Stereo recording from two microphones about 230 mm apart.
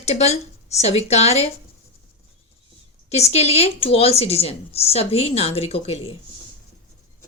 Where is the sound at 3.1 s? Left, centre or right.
Left.